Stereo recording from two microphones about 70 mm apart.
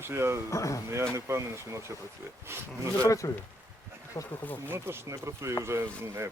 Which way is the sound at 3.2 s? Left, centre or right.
Left.